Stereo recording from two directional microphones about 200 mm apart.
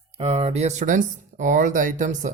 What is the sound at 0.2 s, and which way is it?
Speech, 30° right (ahead or behind).